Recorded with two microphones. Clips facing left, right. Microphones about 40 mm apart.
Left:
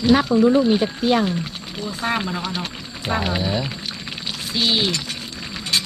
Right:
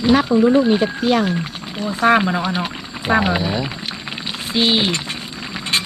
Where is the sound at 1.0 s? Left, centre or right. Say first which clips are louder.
Right 2 dB; right.